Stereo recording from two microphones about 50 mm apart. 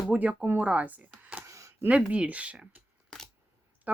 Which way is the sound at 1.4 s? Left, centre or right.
Right.